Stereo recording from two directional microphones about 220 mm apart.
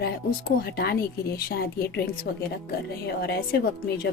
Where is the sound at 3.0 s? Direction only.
45° left (ahead or behind).